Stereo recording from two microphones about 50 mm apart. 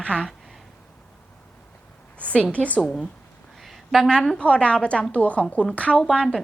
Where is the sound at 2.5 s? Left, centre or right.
Left.